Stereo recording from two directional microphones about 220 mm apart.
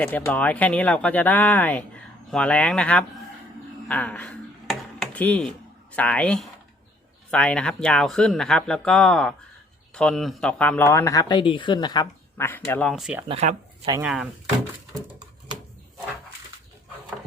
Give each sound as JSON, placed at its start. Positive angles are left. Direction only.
{"t": 0.0, "sound": "speech", "side_deg": 5}
{"t": 3.8, "sound": "a sound", "side_deg": 5}
{"t": 6.0, "sound": "speech", "side_deg": 5}
{"t": 12.9, "sound": "speech", "side_deg": -5}
{"t": 13.2, "sound": "speech", "side_deg": -30}
{"t": 14.0, "sound": "speech", "side_deg": -5}